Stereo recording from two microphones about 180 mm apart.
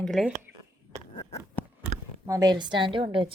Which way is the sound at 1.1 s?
25° left (ahead or behind).